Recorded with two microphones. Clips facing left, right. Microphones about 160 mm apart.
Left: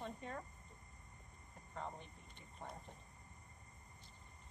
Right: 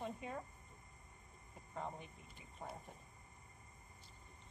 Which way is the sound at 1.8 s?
5° right (ahead or behind).